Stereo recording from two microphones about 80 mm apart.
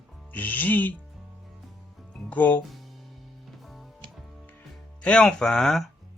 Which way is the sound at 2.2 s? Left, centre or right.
Left.